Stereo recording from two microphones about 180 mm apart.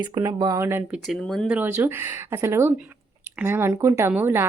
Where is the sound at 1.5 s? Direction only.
10° right (ahead or behind).